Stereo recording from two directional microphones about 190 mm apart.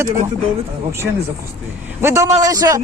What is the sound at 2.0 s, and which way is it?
Speech, 15° right (ahead or behind).